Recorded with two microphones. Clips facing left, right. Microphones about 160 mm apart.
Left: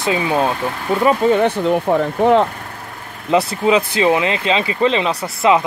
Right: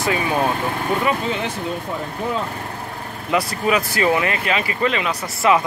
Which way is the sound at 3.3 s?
30° left (ahead or behind).